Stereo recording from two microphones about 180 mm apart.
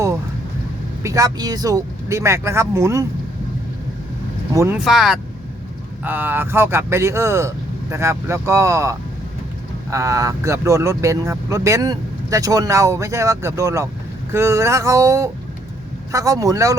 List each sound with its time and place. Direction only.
1.0 s speech: 20° right (ahead or behind)
4.5 s speech: 15° right (ahead or behind)
4.8 s speech: centre (ahead or behind); by 16.7 s 20° right (ahead or behind)